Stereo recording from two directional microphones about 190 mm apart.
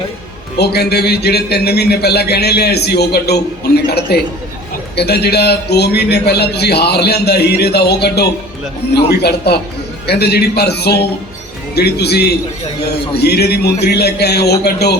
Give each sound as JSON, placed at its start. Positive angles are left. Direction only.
{"t": 0.6, "sound": "a man's voice", "side_deg": 60}